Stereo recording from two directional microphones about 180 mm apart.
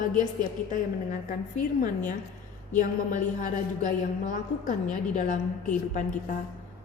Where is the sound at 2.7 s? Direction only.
45° left (ahead or behind).